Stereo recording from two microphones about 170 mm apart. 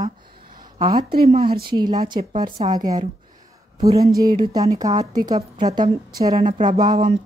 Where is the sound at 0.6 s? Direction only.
25° right (ahead or behind).